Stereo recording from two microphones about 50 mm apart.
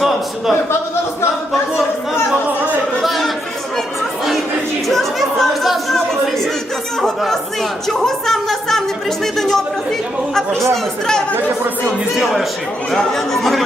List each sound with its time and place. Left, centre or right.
3.0 s chatter: centre
4.9 s speech: centre
11.3 s speech: right
12.1 s speech: centre